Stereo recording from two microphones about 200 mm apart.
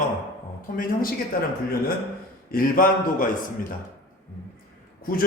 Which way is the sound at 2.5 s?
45° left (ahead or behind).